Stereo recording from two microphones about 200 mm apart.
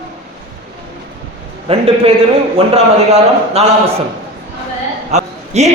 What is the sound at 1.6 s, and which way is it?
A man's voice, 30° right (ahead or behind).